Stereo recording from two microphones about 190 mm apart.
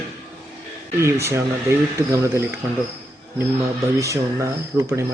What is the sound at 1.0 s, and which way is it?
Speech, 15° right (ahead or behind).